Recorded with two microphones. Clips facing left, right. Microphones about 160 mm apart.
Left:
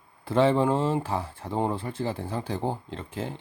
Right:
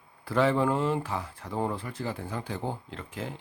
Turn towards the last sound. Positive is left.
turn(degrees=30)  # may be behind; listen again after turning